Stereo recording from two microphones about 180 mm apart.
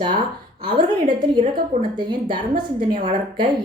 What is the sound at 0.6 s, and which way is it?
A woman's voice, 25° right (ahead or behind).